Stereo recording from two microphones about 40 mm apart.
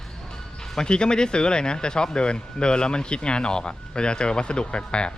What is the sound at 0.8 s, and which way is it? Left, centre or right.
Speech, left.